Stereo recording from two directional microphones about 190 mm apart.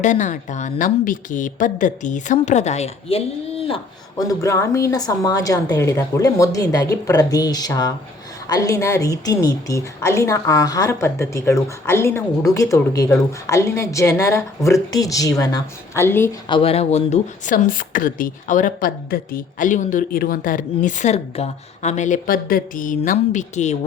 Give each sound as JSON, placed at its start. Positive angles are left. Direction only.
{"t": 0.0, "sound": "speech", "side_deg": 40}
{"t": 4.2, "sound": "a woman's voice", "side_deg": 15}
{"t": 16.5, "sound": "speech", "side_deg": 30}